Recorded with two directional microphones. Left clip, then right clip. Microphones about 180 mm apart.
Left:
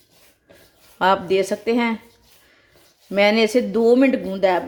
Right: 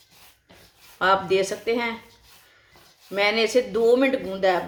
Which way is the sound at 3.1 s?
45° left (ahead or behind).